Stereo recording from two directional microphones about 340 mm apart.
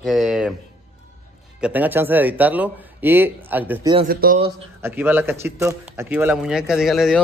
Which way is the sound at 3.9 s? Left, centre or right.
Right.